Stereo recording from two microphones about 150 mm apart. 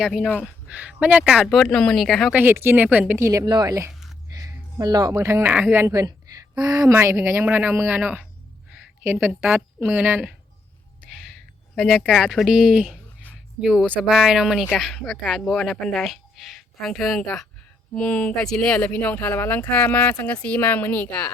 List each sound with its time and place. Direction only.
0.0 s speech: centre (ahead or behind)
0.4 s speech: 10° right (ahead or behind)
2.3 s speech: 15° right (ahead or behind)
8.7 s a sound: 10° right (ahead or behind)
9.8 s speech: 10° right (ahead or behind)
11.8 s speech: centre (ahead or behind)